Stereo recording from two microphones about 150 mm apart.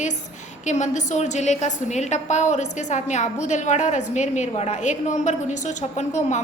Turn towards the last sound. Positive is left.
turn(degrees=50)  # may be behind; listen again after turning